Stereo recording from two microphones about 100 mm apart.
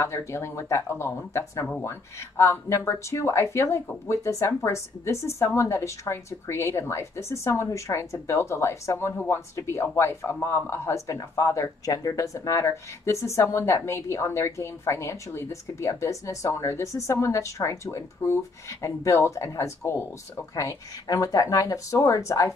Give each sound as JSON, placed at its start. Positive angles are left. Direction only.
{"t": 0.0, "sound": "speech", "side_deg": 25}